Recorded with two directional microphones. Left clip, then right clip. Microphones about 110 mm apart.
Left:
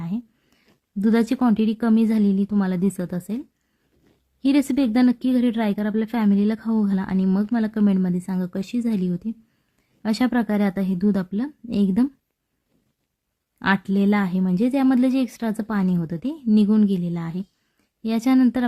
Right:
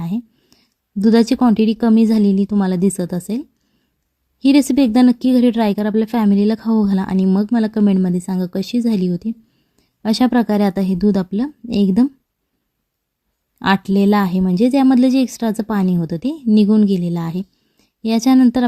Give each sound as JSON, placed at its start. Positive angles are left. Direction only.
{"t": 0.0, "sound": "a sound", "side_deg": -45}
{"t": 1.0, "sound": "speech", "side_deg": -40}
{"t": 13.6, "sound": "a woman's voice", "side_deg": -40}